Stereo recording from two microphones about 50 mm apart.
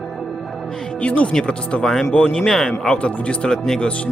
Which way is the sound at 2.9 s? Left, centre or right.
Left.